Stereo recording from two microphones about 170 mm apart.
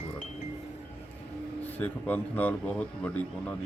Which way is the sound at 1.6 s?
10° left (ahead or behind).